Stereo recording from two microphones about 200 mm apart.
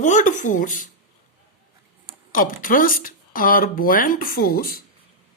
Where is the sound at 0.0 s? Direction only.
40° left (ahead or behind).